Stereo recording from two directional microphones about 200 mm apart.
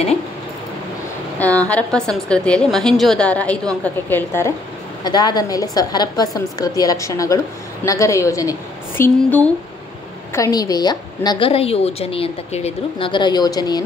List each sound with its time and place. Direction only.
1.6 s a woman's voice: 5° left (ahead or behind)